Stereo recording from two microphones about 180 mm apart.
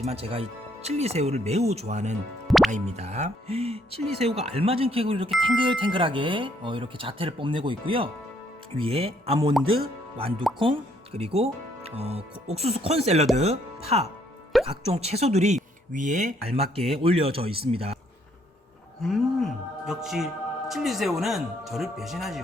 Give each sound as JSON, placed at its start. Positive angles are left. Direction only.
{"t": 0.0, "sound": "speech", "side_deg": -35}
{"t": 14.5, "sound": "music", "side_deg": 0}
{"t": 14.9, "sound": "speech", "side_deg": -35}
{"t": 19.0, "sound": "music", "side_deg": 0}
{"t": 20.7, "sound": "speech", "side_deg": 0}